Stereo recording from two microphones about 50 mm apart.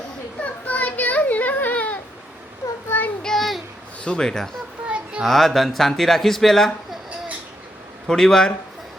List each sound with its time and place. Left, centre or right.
0.4 s children playing: left
1.7 s a sound: left
2.9 s child singing: left
3.2 s child singing: centre
4.0 s speech: centre
8.0 s speech: centre